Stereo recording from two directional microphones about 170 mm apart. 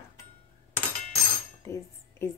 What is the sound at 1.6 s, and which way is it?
Cutlery, 15° left (ahead or behind).